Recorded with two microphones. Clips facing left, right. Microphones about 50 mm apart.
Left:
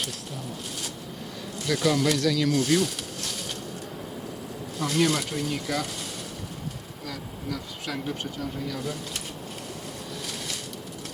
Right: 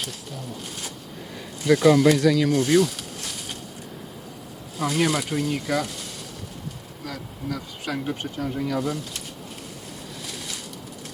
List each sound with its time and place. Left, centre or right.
1.6 s speech: centre
4.8 s speech: centre
7.0 s speech: centre
8.0 s speech: centre